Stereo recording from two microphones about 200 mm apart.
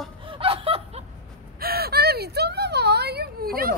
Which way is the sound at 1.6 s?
50° right (ahead or behind).